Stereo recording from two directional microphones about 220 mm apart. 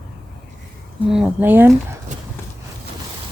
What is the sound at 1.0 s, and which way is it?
Speech, 5° right (ahead or behind).